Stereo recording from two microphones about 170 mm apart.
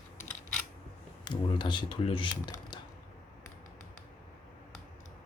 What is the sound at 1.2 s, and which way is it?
Speech, 30° left (ahead or behind).